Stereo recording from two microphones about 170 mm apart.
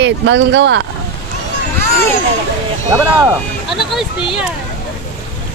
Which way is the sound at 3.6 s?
Centre (ahead or behind).